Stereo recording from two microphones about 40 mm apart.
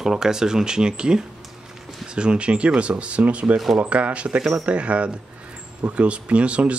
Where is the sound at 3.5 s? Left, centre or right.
Centre.